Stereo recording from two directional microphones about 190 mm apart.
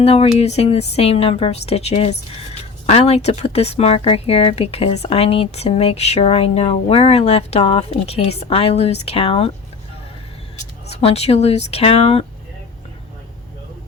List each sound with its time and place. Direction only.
0.0 s speech: 30° left (ahead or behind)
10.8 s speech: 35° left (ahead or behind)